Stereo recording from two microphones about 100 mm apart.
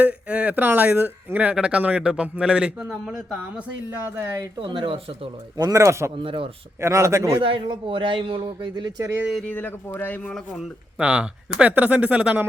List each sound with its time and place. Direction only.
0.0 s speech: 15° right (ahead or behind)
4.6 s a man's voice: 55° right (ahead or behind)
5.5 s a man's voice: 35° right (ahead or behind)
6.2 s a man's voice: 60° right (ahead or behind)
6.8 s a man's voice: 30° right (ahead or behind)
7.4 s a man's voice: 60° right (ahead or behind)
9.5 s speech: 20° left (ahead or behind)
10.2 s speech: 5° left (ahead or behind)
10.9 s speech: 10° right (ahead or behind)